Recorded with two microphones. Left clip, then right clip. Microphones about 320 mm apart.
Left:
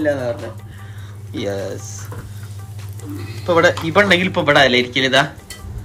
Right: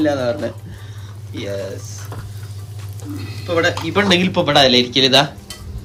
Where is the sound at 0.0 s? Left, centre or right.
Centre.